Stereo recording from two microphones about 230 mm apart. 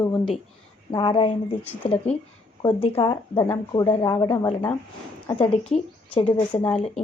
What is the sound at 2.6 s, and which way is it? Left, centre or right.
A woman's voice, left.